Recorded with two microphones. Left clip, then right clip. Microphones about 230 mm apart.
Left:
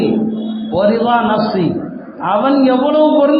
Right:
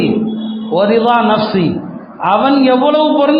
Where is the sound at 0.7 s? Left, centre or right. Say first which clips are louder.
Right 2 dB; right.